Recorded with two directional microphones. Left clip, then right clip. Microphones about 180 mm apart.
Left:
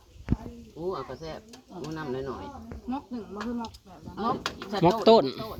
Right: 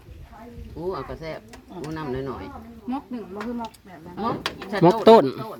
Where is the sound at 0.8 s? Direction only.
10° left (ahead or behind).